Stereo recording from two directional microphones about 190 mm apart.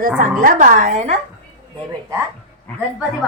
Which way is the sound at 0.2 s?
45° right (ahead or behind).